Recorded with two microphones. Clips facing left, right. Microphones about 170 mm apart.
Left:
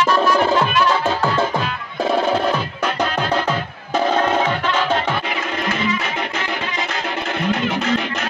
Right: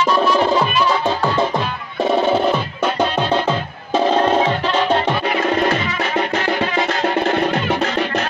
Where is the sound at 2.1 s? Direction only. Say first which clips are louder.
Right 2 dB; 5° right (ahead or behind).